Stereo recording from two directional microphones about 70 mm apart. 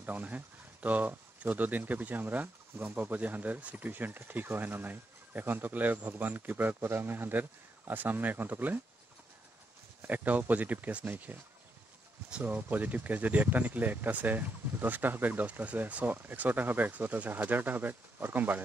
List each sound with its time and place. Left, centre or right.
0.0 s speech: right
10.0 s speech: right
12.4 s speech: right